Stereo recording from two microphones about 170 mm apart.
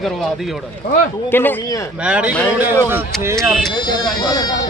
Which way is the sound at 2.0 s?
5° right (ahead or behind).